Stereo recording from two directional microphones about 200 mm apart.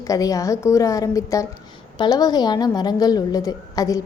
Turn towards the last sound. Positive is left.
turn(degrees=15)  # may be behind; listen again after turning